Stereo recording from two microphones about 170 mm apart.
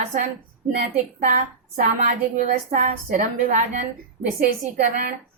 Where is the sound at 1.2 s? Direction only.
55° right (ahead or behind).